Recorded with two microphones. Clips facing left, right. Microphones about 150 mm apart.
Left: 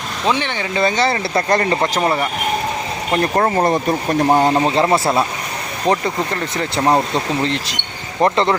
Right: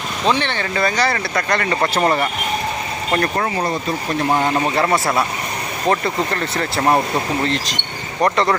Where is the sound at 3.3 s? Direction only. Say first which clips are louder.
Left 5 dB; 45° left (ahead or behind).